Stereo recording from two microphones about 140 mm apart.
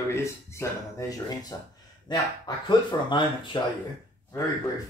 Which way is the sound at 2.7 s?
35° left (ahead or behind).